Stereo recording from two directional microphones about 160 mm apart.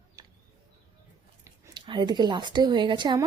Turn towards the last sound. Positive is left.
turn(degrees=-30)  # may be behind; listen again after turning